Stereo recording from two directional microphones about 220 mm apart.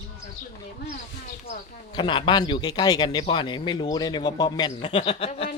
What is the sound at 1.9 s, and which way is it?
A man's voice, 20° left (ahead or behind).